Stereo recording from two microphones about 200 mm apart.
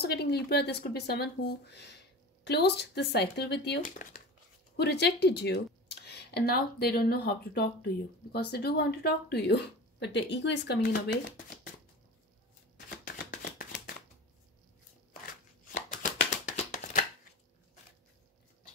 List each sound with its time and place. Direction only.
0.0 s speech: 55° left (ahead or behind)
4.7 s speech: 55° left (ahead or behind)
12.9 s shuffling cards: 45° left (ahead or behind)
15.7 s chopping: 40° left (ahead or behind)